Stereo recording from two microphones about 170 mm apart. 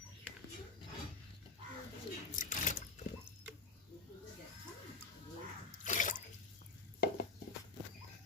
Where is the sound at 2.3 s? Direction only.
50° left (ahead or behind).